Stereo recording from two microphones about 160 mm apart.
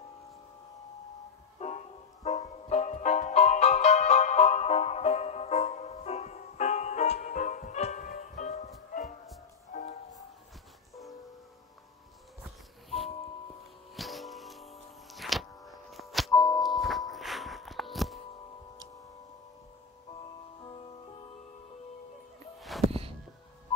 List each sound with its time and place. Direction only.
1.6 s music: 45° left (ahead or behind)
9.7 s music: 55° left (ahead or behind)
13.9 s music: centre (ahead or behind)
16.3 s music: 25° left (ahead or behind)
16.6 s music: centre (ahead or behind)
22.6 s music: centre (ahead or behind)